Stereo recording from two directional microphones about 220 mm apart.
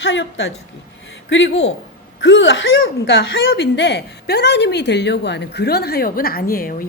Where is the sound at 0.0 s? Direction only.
60° left (ahead or behind).